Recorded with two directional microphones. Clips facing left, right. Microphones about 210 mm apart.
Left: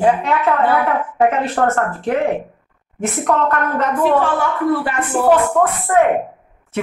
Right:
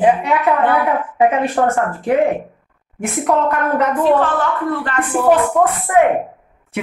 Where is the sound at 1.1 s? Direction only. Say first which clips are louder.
Right 1 dB; 15° right (ahead or behind).